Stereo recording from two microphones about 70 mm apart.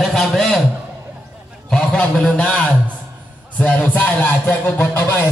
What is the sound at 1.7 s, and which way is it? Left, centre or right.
A man's voice, centre.